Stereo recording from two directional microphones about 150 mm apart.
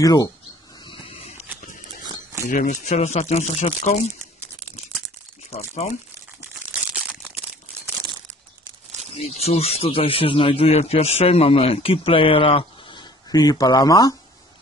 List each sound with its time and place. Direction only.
0.0 s speech: 25° left (ahead or behind)
0.8 s a sound: 35° left (ahead or behind)
2.5 s speech: 55° left (ahead or behind)
6.7 s crumpling: 10° right (ahead or behind)
9.1 s speech: 45° left (ahead or behind); by 14.1 s 25° left (ahead or behind)